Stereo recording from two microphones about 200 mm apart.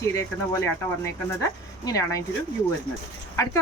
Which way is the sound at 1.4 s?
15° left (ahead or behind).